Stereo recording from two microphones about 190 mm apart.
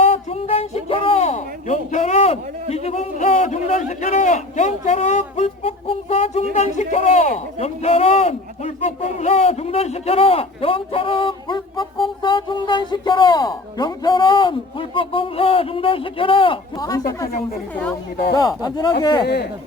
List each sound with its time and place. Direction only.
0.0 s speech: 30° left (ahead or behind)
18.3 s speech: 20° left (ahead or behind)